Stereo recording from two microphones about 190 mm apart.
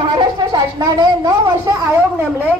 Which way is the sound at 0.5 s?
25° right (ahead or behind).